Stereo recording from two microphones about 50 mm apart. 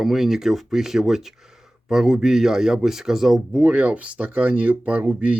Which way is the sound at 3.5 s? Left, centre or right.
Right.